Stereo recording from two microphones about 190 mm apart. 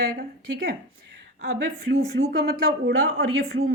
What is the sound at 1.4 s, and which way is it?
A woman's voice, 80° right.